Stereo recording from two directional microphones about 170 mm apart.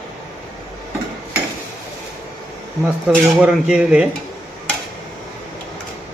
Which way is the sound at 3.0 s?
5° right (ahead or behind).